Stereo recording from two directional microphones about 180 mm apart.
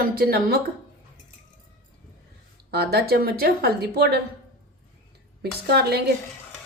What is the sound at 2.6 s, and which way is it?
A woman's voice, 60° right (ahead or behind).